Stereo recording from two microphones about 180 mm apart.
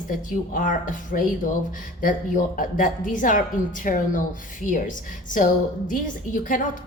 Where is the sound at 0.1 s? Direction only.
50° left (ahead or behind).